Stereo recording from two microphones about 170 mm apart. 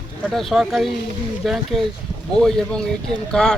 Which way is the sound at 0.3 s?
Centre (ahead or behind).